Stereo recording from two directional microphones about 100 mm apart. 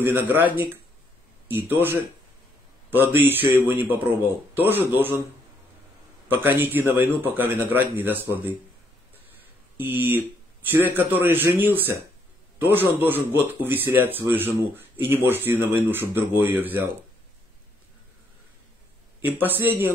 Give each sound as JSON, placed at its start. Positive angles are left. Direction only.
{"t": 0.0, "sound": "a man's voice", "side_deg": -20}
{"t": 6.2, "sound": "a man's voice", "side_deg": -20}
{"t": 9.8, "sound": "a man's voice", "side_deg": -20}
{"t": 19.2, "sound": "a man's voice", "side_deg": -20}